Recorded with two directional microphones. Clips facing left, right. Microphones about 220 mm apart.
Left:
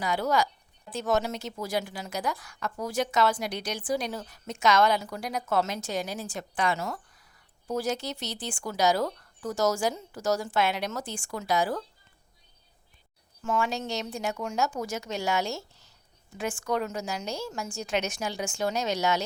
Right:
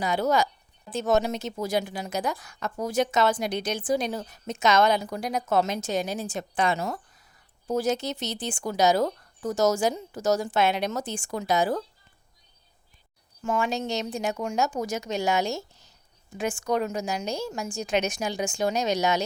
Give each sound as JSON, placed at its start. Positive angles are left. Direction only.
{"t": 0.0, "sound": "speech", "side_deg": -20}
{"t": 13.4, "sound": "a woman's voice", "side_deg": -15}